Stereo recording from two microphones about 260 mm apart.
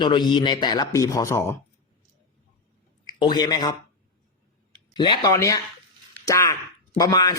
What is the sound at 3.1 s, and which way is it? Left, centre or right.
Speech, centre.